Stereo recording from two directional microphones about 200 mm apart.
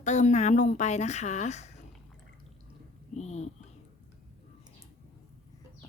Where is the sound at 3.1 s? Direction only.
35° left (ahead or behind).